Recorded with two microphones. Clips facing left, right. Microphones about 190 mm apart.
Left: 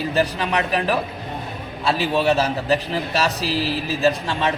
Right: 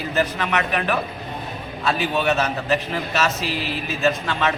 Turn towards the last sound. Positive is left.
turn(degrees=30)  # may be behind; listen again after turning